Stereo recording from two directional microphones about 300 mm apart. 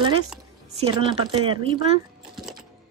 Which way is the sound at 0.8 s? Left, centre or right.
Centre.